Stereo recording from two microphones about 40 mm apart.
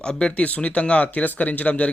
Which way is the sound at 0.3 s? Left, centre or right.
Left.